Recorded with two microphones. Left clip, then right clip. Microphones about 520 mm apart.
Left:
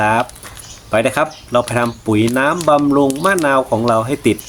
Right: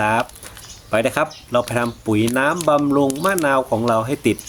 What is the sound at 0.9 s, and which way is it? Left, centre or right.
Speech, right.